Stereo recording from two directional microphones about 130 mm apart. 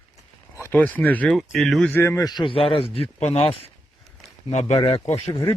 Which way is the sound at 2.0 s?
25° left (ahead or behind).